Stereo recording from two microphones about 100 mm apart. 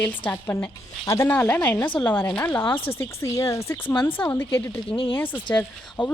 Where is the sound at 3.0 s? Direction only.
25° left (ahead or behind).